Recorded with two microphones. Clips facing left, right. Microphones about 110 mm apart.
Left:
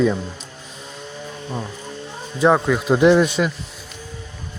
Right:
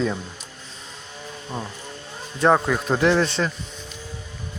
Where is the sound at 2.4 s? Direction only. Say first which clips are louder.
Left 2 dB; centre (ahead or behind).